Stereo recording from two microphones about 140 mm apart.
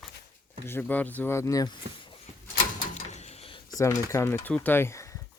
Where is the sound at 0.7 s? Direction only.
15° left (ahead or behind); by 2.2 s 35° left (ahead or behind).